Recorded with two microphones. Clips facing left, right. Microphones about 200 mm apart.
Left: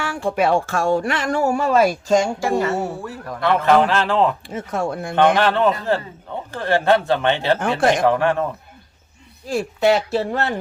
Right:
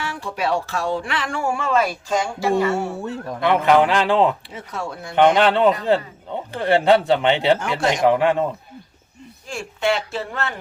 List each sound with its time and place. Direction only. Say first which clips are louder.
0.0 s speech: left 6 dB; 50° left (ahead or behind)
3.0 s speech: right 1 dB; 20° right (ahead or behind)
4.4 s speech: left 6 dB; 50° left (ahead or behind)
5.1 s speech: right 1 dB; 15° right (ahead or behind)
7.8 s speech: left 4 dB; 55° left (ahead or behind)
8.0 s speech: right 1 dB; 15° right (ahead or behind)
9.5 s speech: left 5 dB; 40° left (ahead or behind)